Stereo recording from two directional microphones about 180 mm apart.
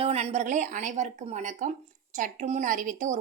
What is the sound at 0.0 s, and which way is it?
A woman's voice, 35° right (ahead or behind).